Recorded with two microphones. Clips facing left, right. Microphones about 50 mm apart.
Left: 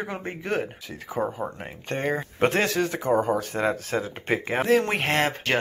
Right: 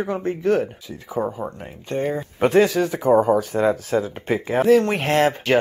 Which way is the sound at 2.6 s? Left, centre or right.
Centre.